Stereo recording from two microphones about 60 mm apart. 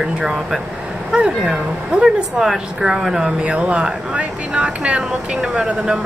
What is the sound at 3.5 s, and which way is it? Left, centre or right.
Speech, right.